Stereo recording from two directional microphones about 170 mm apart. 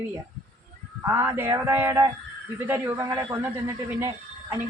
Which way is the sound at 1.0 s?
15° right (ahead or behind).